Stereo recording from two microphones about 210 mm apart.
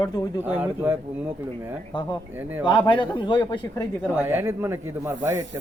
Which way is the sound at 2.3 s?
10° right (ahead or behind).